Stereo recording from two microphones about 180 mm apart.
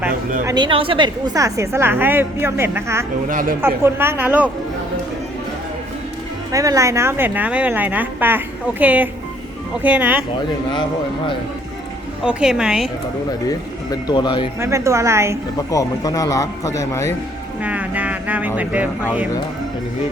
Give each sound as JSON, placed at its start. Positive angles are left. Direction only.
{"t": 0.4, "sound": "a woman's voice", "side_deg": -25}
{"t": 3.2, "sound": "speech", "side_deg": -50}
{"t": 3.6, "sound": "a woman's voice", "side_deg": -10}
{"t": 6.5, "sound": "a woman's voice", "side_deg": -20}
{"t": 12.2, "sound": "a woman's voice", "side_deg": -5}
{"t": 13.9, "sound": "speech", "side_deg": 25}
{"t": 14.6, "sound": "a woman's voice", "side_deg": -15}
{"t": 15.5, "sound": "speech", "side_deg": 20}
{"t": 17.6, "sound": "music", "side_deg": -10}